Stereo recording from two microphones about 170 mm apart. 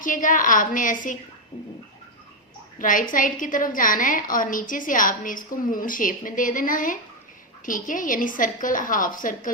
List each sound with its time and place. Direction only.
0.0 s a woman's voice: 50° left (ahead or behind)
2.7 s a woman's voice: 55° left (ahead or behind)